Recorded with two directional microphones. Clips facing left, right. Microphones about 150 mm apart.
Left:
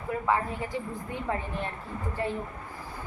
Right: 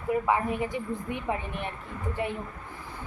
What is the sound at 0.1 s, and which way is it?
A woman's voice, 15° right (ahead or behind).